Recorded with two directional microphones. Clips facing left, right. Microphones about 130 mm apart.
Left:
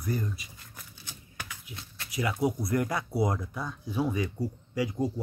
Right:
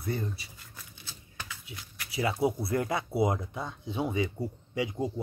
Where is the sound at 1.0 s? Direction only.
15° left (ahead or behind).